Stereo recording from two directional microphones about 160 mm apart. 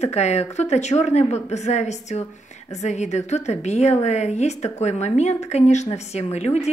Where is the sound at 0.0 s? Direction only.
45° left (ahead or behind).